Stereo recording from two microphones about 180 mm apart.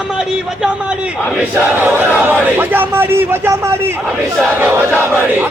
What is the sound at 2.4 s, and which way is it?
A man's voice, 10° right (ahead or behind).